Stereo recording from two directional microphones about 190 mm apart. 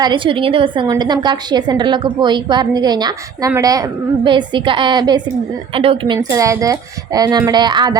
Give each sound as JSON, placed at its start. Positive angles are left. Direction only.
{"t": 0.0, "sound": "a woman's voice", "side_deg": -25}
{"t": 6.1, "sound": "a woman's voice", "side_deg": -15}